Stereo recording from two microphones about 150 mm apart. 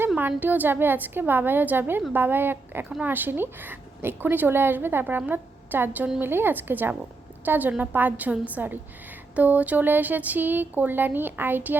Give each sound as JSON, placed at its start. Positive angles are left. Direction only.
{"t": 0.2, "sound": "a woman's voice", "side_deg": -10}